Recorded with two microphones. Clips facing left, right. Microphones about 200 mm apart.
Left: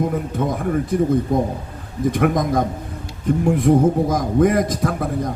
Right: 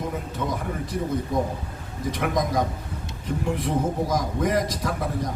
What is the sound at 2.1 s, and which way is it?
A man's voice, 50° left (ahead or behind).